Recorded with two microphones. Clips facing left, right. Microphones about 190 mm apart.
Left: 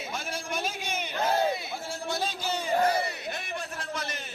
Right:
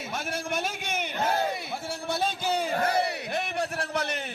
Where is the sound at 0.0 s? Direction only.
60° right (ahead or behind).